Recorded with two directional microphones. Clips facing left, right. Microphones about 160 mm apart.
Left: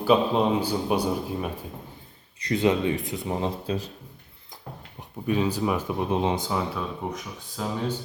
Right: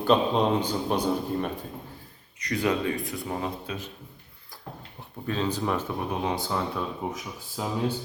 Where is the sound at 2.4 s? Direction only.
25° left (ahead or behind).